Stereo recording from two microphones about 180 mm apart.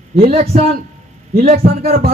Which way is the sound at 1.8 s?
55° right (ahead or behind).